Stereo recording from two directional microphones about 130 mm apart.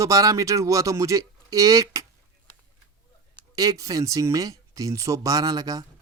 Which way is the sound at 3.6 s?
25° right (ahead or behind).